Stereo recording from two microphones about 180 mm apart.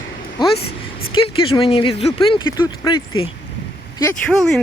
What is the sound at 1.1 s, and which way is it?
Speech, 30° left (ahead or behind).